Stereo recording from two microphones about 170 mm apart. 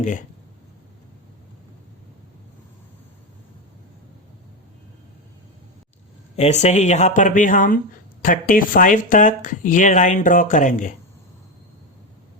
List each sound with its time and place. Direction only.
6.3 s speech: 40° left (ahead or behind)